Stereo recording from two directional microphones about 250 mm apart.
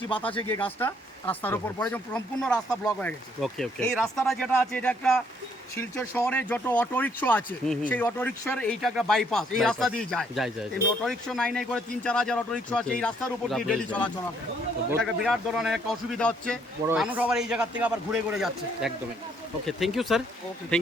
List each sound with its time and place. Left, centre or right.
0.1 s speech: centre
0.6 s speech: centre